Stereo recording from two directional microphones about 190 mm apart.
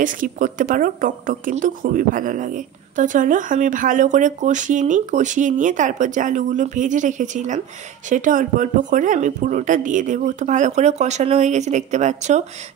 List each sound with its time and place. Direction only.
0.0 s a woman's voice: 45° right (ahead or behind)